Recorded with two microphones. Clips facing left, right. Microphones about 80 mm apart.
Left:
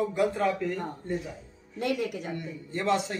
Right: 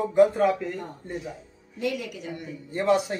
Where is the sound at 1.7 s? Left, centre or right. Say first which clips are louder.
Left 1 dB; left.